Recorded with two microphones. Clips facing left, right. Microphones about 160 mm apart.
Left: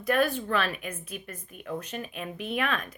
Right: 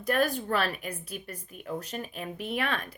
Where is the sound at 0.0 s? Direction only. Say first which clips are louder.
Left 1 dB; 40° right (ahead or behind).